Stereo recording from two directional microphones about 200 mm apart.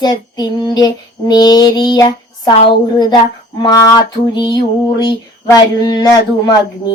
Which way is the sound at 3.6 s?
20° left (ahead or behind).